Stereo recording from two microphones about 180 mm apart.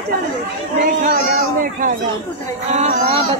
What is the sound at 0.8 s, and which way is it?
Speech, 50° right (ahead or behind).